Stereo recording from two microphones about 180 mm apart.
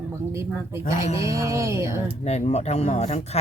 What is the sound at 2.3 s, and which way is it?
Speech, 35° left (ahead or behind).